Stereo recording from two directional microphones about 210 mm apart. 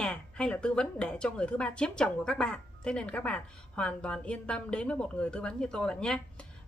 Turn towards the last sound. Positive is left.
turn(degrees=5)  # may be behind; listen again after turning